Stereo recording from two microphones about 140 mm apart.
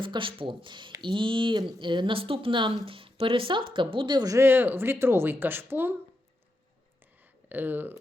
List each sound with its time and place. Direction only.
0.0 s speech: 35° right (ahead or behind); by 6.0 s 15° right (ahead or behind)
7.4 s speech: 15° right (ahead or behind)